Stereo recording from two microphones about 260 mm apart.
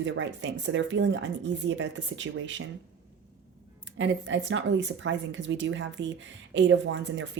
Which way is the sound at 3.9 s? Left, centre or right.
Right.